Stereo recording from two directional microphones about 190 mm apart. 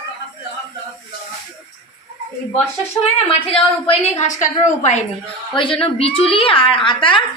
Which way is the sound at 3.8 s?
30° left (ahead or behind).